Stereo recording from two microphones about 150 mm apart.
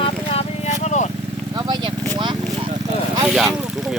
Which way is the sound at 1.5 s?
30° right (ahead or behind).